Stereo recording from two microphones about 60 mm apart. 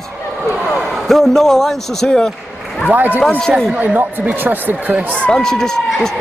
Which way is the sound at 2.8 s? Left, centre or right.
Right.